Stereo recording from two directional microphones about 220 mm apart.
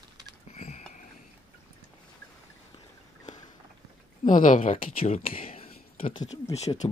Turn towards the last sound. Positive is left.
turn(degrees=30)  # may be behind; listen again after turning